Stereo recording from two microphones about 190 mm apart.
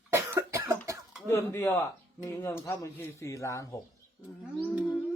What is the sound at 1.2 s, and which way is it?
Speech, 15° left (ahead or behind).